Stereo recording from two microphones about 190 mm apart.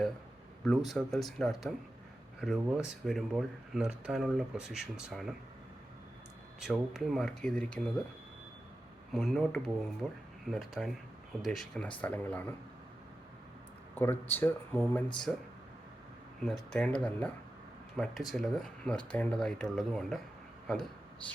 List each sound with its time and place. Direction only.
0.6 s speech: centre (ahead or behind)
6.6 s speech: centre (ahead or behind)
9.1 s speech: centre (ahead or behind)
13.9 s speech: 10° left (ahead or behind)
16.4 s speech: 5° left (ahead or behind)